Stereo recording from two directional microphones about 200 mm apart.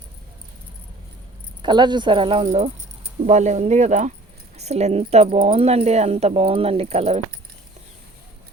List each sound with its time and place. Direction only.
1.6 s speech: 20° right (ahead or behind)